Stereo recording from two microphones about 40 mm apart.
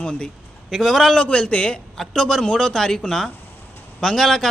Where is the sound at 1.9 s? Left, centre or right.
Centre.